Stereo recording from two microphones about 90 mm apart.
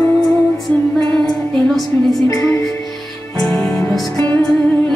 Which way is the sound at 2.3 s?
35° left (ahead or behind).